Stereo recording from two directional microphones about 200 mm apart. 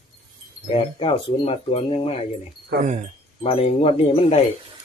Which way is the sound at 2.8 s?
35° right (ahead or behind).